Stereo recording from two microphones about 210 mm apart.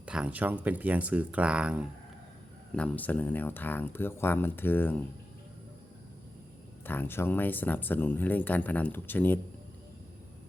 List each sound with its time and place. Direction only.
0.0 s speech: 5° right (ahead or behind)
2.7 s speech: 5° left (ahead or behind)
6.8 s speech: 10° left (ahead or behind)